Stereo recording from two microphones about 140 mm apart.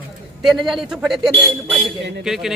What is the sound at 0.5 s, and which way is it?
Speech, centre (ahead or behind).